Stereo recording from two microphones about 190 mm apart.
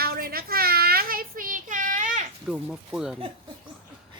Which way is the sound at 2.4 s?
5° right (ahead or behind).